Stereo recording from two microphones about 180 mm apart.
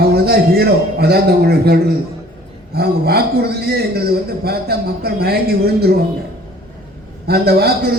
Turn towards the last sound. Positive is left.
turn(degrees=-60)  # may be behind; listen again after turning